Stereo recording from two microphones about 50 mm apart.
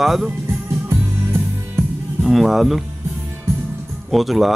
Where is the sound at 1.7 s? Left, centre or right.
Centre.